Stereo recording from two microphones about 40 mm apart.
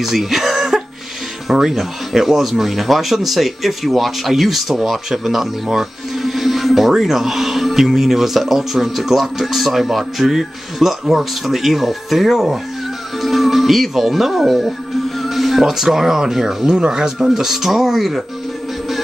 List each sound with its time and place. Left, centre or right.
0.0 s cough: centre
1.5 s speech: centre
17.3 s speech: centre